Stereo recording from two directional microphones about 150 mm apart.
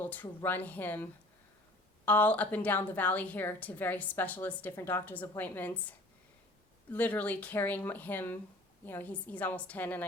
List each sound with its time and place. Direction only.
0.0 s a woman's voice: 10° left (ahead or behind)
6.9 s a woman's voice: 10° left (ahead or behind)